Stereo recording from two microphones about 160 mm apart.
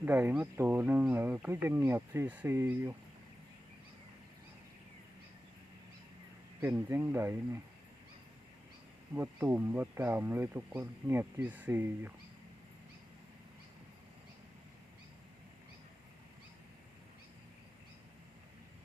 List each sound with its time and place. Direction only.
0.0 s speech: 10° right (ahead or behind)
6.6 s speech: 15° right (ahead or behind)
9.1 s speech: 15° right (ahead or behind)